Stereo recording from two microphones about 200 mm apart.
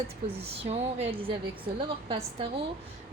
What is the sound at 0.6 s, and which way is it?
A woman's voice, 30° right (ahead or behind).